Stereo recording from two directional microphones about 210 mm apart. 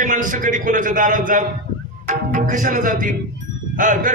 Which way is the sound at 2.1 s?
40° right (ahead or behind).